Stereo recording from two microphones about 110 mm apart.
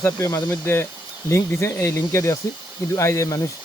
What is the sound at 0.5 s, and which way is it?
Speech, 20° left (ahead or behind).